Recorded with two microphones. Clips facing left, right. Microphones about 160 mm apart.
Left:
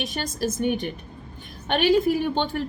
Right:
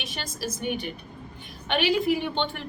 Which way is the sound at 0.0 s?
45° left (ahead or behind).